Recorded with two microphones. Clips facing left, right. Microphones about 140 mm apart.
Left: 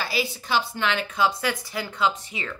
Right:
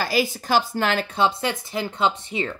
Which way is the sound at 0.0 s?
45° right (ahead or behind).